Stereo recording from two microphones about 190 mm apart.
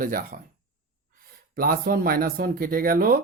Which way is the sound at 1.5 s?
50° right (ahead or behind).